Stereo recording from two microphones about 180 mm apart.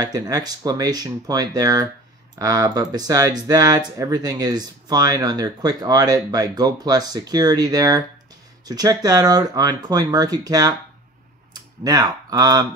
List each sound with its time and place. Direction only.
0.0 s speech: 20° right (ahead or behind)
11.8 s speech: 20° right (ahead or behind)